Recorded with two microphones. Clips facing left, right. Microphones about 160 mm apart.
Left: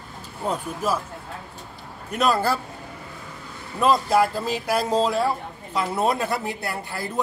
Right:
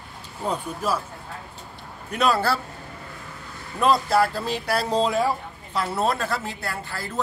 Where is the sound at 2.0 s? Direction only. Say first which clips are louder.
Even; 5° left (ahead or behind).